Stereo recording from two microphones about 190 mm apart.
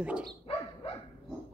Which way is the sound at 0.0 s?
5° right (ahead or behind).